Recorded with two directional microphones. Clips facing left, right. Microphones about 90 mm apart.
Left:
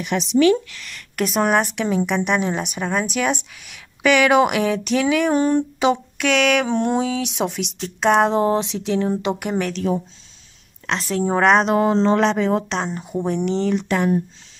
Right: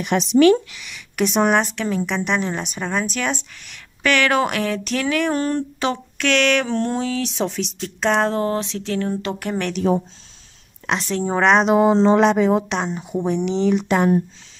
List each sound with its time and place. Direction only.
0.0 s speech: 45° right (ahead or behind)
0.7 s speech: 5° right (ahead or behind)
1.6 s a woman's voice: 10° left (ahead or behind)
11.0 s speech: centre (ahead or behind)